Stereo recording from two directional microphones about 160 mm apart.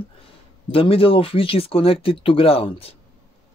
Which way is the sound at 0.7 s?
35° left (ahead or behind).